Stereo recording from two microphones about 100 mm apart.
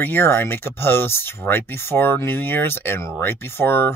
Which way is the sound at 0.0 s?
20° left (ahead or behind).